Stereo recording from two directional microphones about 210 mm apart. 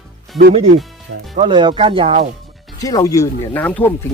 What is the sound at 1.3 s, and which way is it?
Speech, 25° right (ahead or behind).